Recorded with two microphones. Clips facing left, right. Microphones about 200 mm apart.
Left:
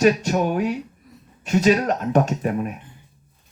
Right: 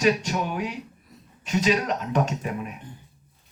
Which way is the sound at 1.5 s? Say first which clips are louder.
Left 5 dB; 45° left (ahead or behind).